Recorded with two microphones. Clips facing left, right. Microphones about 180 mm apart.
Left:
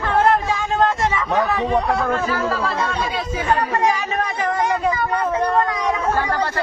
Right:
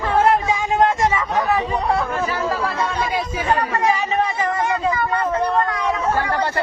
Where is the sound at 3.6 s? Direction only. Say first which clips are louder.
Left 1 dB; 10° left (ahead or behind).